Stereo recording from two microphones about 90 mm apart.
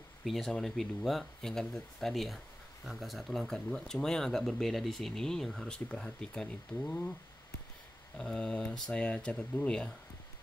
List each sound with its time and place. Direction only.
0.2 s speech: centre (ahead or behind)
8.2 s speech: 5° left (ahead or behind)